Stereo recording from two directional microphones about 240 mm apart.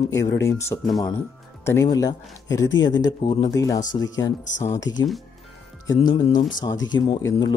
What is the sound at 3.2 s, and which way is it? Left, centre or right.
Speech, centre.